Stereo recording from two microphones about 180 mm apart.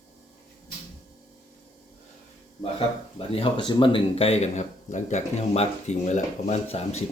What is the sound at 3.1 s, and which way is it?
Speech, 30° left (ahead or behind).